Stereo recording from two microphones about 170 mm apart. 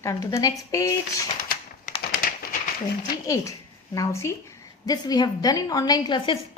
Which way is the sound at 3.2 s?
20° left (ahead or behind).